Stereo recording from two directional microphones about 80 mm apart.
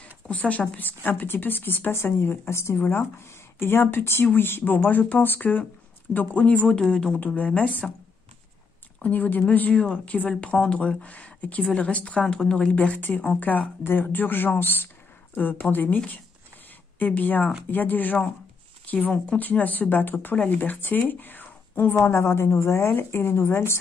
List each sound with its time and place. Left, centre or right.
0.0 s a woman's voice: centre
9.0 s a woman's voice: left
17.0 s a woman's voice: left